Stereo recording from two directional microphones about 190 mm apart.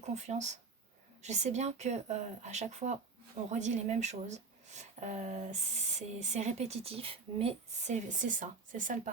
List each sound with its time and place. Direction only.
0.2 s speech: 35° right (ahead or behind)